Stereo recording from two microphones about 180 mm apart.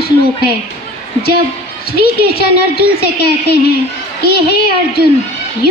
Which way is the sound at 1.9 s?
60° left (ahead or behind).